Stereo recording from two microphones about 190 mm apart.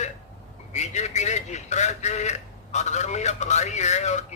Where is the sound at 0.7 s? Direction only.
35° left (ahead or behind).